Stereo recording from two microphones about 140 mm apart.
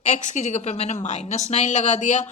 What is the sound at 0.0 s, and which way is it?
Speech, 55° left (ahead or behind).